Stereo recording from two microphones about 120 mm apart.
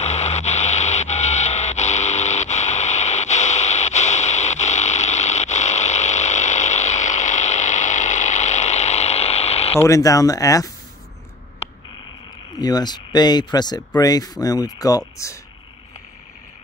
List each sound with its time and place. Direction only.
0.0 s a sound: 65° left (ahead or behind)
9.8 s speech: 30° left (ahead or behind)
12.5 s speech: 35° left (ahead or behind)